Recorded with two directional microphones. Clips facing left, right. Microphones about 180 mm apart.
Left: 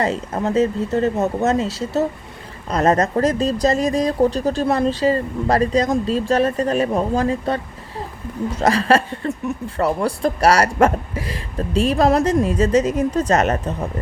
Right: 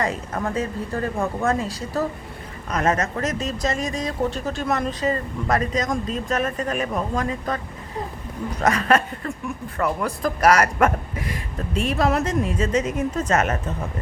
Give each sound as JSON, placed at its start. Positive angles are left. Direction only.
{"t": 0.0, "sound": "speech", "side_deg": 25}